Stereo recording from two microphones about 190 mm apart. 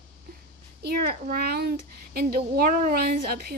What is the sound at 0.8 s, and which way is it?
A child's voice, 55° right (ahead or behind).